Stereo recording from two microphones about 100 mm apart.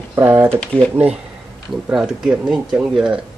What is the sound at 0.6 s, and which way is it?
Speech, 10° left (ahead or behind).